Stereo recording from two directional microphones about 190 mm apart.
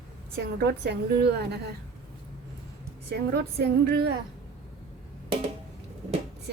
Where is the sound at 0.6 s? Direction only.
60° right (ahead or behind).